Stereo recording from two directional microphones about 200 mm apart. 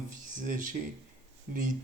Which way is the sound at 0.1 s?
40° right (ahead or behind).